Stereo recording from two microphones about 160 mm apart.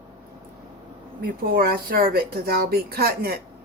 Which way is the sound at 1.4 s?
70° right (ahead or behind).